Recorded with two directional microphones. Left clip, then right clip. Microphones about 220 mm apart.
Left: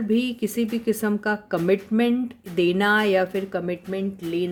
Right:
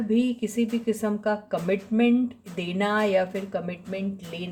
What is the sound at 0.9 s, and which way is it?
Speech, 45° left (ahead or behind).